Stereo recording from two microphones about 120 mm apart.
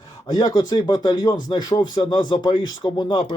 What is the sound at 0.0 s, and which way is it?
Speech, 45° left (ahead or behind).